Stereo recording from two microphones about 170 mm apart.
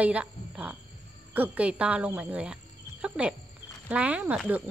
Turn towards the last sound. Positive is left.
turn(degrees=-10)  # may be behind; listen again after turning